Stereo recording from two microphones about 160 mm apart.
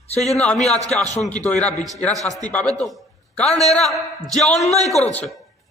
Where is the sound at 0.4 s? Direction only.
5° left (ahead or behind).